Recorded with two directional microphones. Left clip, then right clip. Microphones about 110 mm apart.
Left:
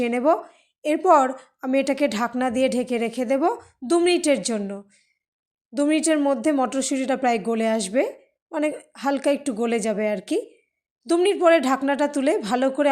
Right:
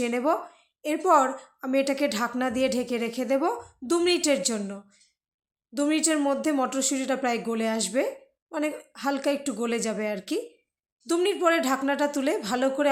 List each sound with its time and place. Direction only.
0.0 s a woman's voice: 35° left (ahead or behind)